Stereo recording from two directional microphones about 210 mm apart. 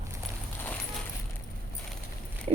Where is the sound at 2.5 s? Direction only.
25° right (ahead or behind).